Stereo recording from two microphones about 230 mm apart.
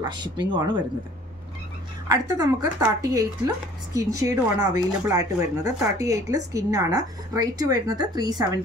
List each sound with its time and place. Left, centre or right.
0.0 s speech: centre
2.0 s speech: centre